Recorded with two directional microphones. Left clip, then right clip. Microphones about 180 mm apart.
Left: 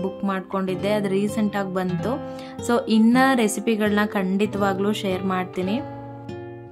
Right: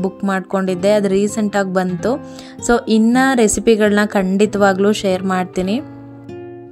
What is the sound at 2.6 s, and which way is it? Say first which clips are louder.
Music: right 7 dB; 25° right (ahead or behind).